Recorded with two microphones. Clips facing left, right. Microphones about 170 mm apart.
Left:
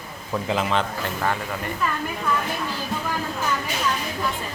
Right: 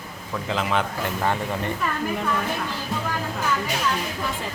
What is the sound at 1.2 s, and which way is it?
Speech, 20° right (ahead or behind).